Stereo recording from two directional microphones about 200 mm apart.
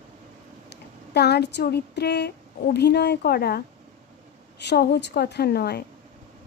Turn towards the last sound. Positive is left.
turn(degrees=55)  # may be behind; listen again after turning